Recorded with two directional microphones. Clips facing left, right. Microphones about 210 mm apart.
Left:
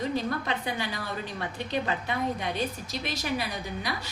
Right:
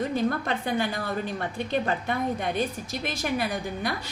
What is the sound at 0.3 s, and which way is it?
Speech, 50° right (ahead or behind).